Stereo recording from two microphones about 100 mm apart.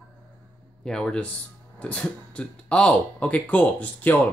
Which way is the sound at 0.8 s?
5° left (ahead or behind).